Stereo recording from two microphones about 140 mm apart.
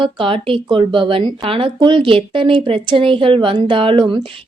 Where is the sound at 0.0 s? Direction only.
40° right (ahead or behind).